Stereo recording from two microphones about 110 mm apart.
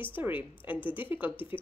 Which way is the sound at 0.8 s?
50° left (ahead or behind).